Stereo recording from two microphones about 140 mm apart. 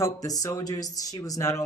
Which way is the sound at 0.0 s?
25° left (ahead or behind).